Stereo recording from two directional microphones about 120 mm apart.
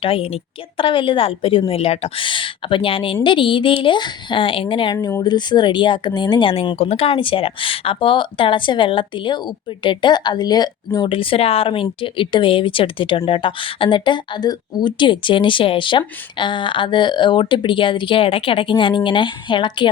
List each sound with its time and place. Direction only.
0.0 s a woman's voice: 50° left (ahead or behind)